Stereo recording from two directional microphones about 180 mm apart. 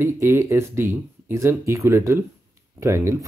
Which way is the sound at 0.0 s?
15° right (ahead or behind).